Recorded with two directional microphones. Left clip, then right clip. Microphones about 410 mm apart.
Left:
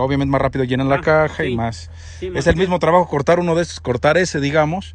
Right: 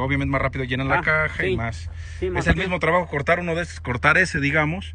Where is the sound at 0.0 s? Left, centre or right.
Centre.